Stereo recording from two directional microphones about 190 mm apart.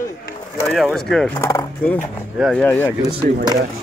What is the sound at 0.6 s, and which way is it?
Speech, centre (ahead or behind).